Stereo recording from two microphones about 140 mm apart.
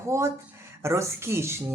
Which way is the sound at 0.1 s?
20° right (ahead or behind).